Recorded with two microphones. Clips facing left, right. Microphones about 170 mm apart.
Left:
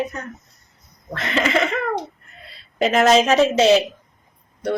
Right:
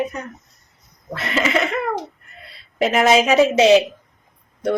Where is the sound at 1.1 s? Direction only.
Centre (ahead or behind).